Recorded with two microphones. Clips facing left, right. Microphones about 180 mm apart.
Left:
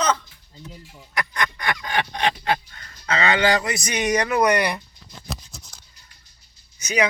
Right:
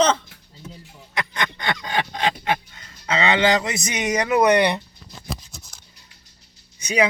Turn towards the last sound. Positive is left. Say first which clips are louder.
# right 2 dB
turn(degrees=-30)  # may be behind; listen again after turning